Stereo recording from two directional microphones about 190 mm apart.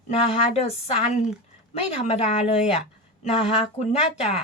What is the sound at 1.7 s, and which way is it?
A woman's voice, 35° left (ahead or behind).